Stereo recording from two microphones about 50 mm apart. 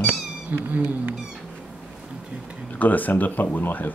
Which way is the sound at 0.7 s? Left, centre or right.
Right.